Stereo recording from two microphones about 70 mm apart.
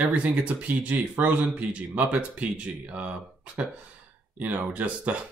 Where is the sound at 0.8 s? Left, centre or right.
Right.